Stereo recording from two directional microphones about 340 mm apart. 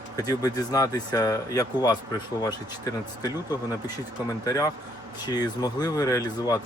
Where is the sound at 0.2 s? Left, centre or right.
Centre.